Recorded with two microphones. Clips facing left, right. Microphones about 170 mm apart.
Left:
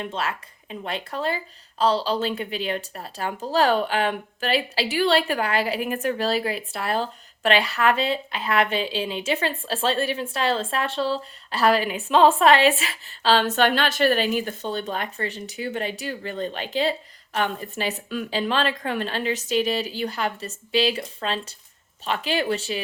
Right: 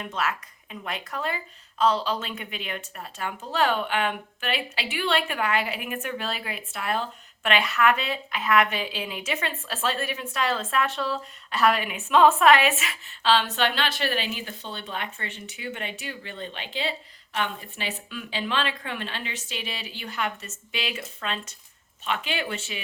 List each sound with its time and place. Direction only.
0.0 s speech: 30° left (ahead or behind)